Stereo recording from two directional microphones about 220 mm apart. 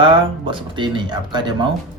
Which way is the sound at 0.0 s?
25° right (ahead or behind).